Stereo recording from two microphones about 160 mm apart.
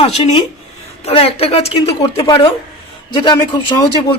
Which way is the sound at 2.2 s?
25° left (ahead or behind).